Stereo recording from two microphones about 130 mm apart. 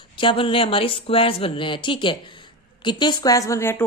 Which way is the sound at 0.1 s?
40° left (ahead or behind).